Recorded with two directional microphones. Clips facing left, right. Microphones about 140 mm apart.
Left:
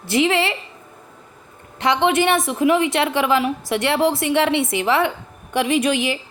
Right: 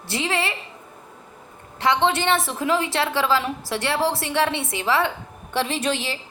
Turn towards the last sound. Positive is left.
turn(degrees=15)  # may be behind; listen again after turning